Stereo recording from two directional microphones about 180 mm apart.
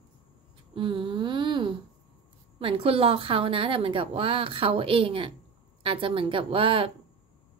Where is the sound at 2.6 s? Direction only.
30° right (ahead or behind).